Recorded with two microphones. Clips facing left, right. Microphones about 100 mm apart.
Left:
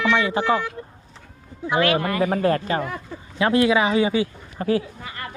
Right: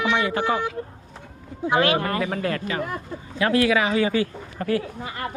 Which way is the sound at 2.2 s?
30° left (ahead or behind).